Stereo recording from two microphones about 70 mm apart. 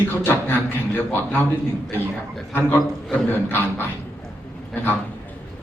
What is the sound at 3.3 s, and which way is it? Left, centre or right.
Speech, left.